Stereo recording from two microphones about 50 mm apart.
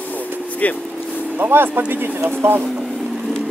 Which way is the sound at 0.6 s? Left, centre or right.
Left.